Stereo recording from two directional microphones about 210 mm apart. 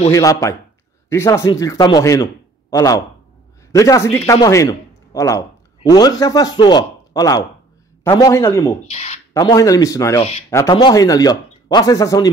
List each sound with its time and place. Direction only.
0.1 s speech: 15° left (ahead or behind)
8.8 s speech: 30° left (ahead or behind)
9.3 s speech: 15° left (ahead or behind)